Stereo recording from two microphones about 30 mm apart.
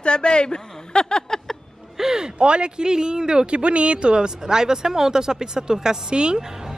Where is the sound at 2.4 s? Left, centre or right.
Right.